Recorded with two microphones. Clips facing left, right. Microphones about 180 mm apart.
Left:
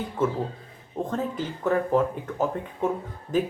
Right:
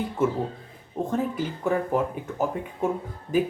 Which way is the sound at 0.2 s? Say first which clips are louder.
Even; 10° right (ahead or behind).